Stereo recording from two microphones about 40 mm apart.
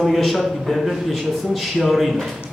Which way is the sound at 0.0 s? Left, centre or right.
Centre.